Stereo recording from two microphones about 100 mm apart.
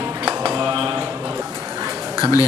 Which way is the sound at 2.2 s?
35° left (ahead or behind).